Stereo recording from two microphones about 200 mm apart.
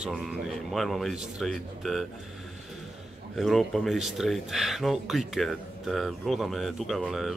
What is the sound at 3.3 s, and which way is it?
Speech, centre (ahead or behind).